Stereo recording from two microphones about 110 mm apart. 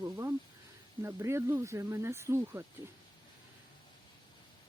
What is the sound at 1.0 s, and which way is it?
Speech, 25° right (ahead or behind).